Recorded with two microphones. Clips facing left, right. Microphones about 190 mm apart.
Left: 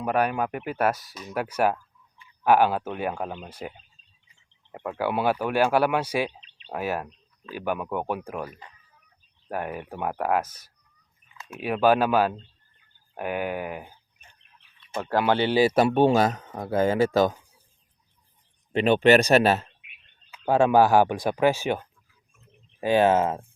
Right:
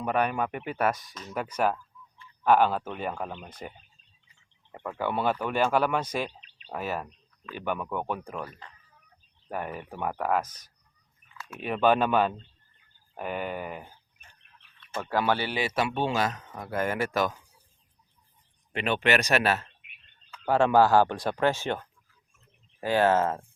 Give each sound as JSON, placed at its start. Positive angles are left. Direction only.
{"t": 0.0, "sound": "speech", "side_deg": 5}
{"t": 4.9, "sound": "speech", "side_deg": 5}
{"t": 11.3, "sound": "a sound", "side_deg": 20}
{"t": 11.6, "sound": "speech", "side_deg": 5}
{"t": 15.1, "sound": "speech", "side_deg": 15}
{"t": 18.7, "sound": "speech", "side_deg": 35}
{"t": 20.3, "sound": "speech", "side_deg": 15}